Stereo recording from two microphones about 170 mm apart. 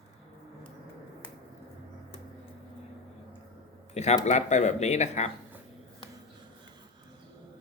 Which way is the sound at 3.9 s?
40° left (ahead or behind).